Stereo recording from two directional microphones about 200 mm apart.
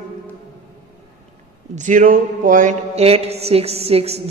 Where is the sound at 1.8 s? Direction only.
40° right (ahead or behind).